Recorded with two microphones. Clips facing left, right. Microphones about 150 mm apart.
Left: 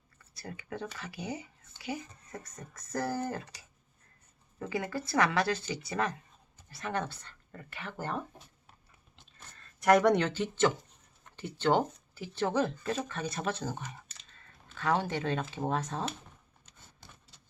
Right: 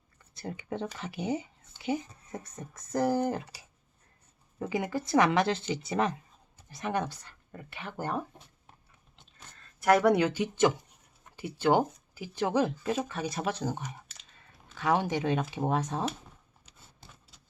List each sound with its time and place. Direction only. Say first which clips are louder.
0.7 s speech: right 4 dB; 25° right (ahead or behind)
4.6 s speech: right 3 dB; 15° right (ahead or behind)
9.1 s a sound: right 1 dB; centre (ahead or behind)
11.2 s speech: right 2 dB; 10° right (ahead or behind)